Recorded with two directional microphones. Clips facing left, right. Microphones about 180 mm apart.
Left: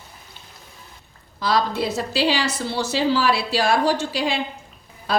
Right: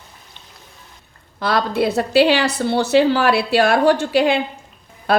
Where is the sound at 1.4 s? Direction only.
60° right (ahead or behind).